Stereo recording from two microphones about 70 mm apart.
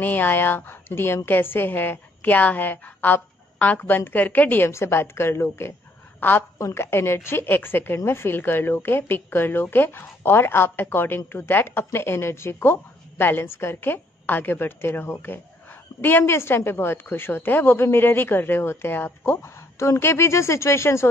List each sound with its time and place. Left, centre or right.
0.0 s a woman's voice: left
4.6 s a woman's voice: left
6.2 s a woman's voice: left